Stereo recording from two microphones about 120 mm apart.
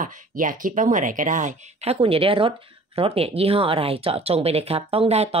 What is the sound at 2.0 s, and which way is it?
Speech, 50° right (ahead or behind).